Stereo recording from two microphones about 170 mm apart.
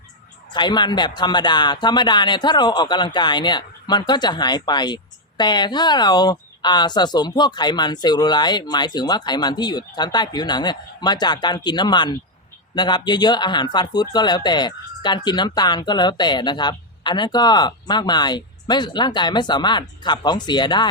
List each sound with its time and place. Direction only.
0.5 s speech: 25° left (ahead or behind)